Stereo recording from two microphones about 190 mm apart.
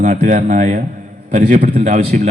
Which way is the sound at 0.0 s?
40° right (ahead or behind).